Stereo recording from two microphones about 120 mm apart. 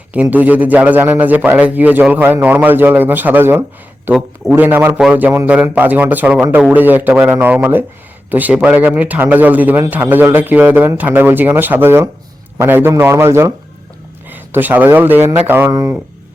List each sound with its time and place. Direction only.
0.1 s a man's voice: 15° right (ahead or behind)
15.7 s a man's voice: 30° right (ahead or behind)